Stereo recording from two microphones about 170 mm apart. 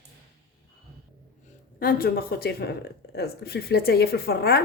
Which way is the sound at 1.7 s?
60° left (ahead or behind).